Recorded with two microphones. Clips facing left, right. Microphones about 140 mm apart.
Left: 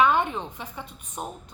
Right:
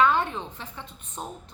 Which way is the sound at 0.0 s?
15° left (ahead or behind).